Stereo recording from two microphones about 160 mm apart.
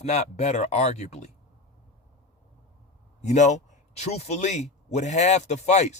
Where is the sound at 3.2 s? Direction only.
45° left (ahead or behind).